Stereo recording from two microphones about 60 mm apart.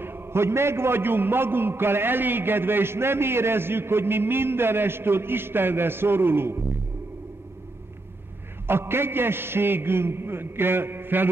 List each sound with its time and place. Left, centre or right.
0.0 s a man's voice: right
8.6 s a man's voice: right